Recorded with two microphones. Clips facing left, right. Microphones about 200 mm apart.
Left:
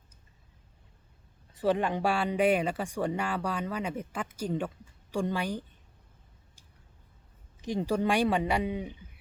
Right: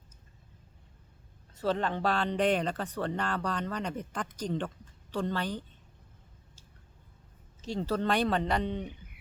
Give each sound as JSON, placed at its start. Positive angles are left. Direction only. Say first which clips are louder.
{"t": 1.5, "sound": "speech", "louder": "left 3 dB", "side_deg": 10}
{"t": 7.6, "sound": "speech", "louder": "left 2 dB", "side_deg": 15}